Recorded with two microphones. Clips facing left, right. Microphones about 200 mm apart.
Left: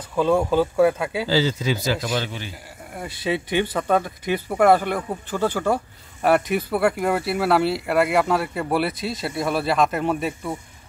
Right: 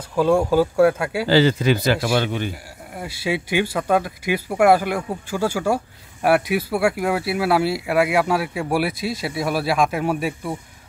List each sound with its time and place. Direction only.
0.1 s speech: 5° right (ahead or behind)
1.2 s speech: 65° right (ahead or behind)
2.9 s speech: 5° right (ahead or behind)